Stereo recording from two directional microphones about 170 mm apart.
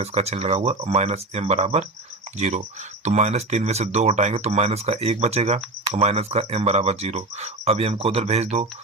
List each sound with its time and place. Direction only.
0.0 s speech: 40° right (ahead or behind)
3.0 s speech: 40° right (ahead or behind)